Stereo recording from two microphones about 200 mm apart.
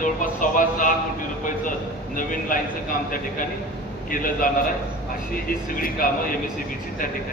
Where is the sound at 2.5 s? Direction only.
40° left (ahead or behind).